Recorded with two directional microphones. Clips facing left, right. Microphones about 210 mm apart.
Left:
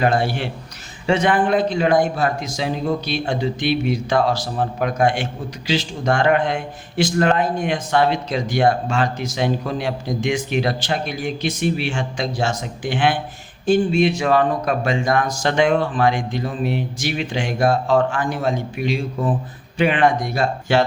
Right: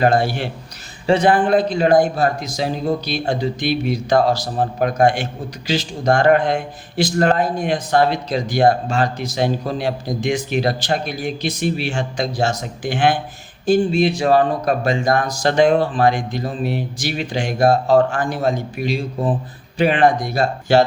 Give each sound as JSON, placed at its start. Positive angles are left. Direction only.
{"t": 0.0, "sound": "a man's voice", "side_deg": -40}